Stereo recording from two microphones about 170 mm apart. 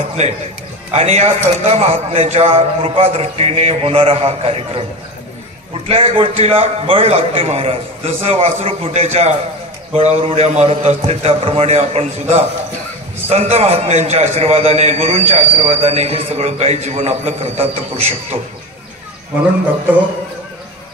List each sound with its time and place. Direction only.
0.2 s a man's voice: 40° right (ahead or behind)
5.9 s a man's voice: 35° right (ahead or behind)